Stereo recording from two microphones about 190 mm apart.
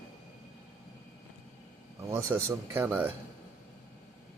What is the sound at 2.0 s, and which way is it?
Speech, 10° right (ahead or behind).